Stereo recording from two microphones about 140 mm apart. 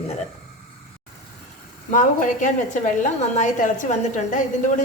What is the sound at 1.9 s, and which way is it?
A woman's voice, 65° left (ahead or behind).